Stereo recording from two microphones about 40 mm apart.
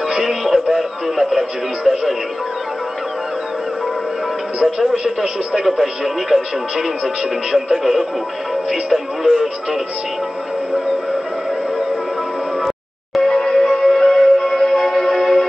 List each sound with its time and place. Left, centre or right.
0.1 s music: centre
1.9 s speech: centre
4.7 s speech: centre
7.5 s speech: centre
12.6 s music: centre